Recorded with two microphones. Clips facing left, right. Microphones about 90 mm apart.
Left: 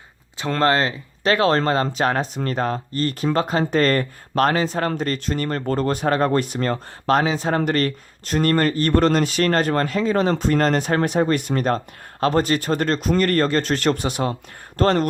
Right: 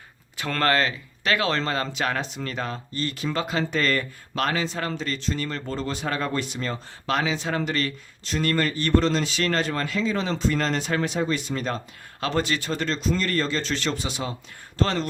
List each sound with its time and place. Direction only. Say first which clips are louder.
0.3 s speech: left 4 dB; 25° left (ahead or behind); by 15.0 s 50° left (ahead or behind)